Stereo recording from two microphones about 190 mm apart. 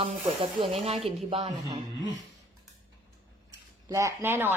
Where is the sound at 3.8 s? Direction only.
15° right (ahead or behind).